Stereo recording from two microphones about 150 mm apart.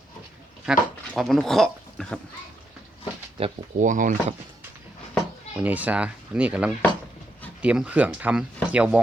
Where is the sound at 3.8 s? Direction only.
60° right (ahead or behind).